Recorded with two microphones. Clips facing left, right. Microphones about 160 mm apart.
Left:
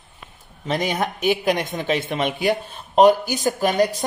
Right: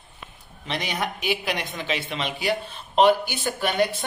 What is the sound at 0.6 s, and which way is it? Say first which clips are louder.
A woman's voice: left 6 dB; 45° left (ahead or behind).